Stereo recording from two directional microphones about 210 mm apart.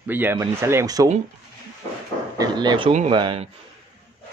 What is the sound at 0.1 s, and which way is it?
Speech, 10° right (ahead or behind).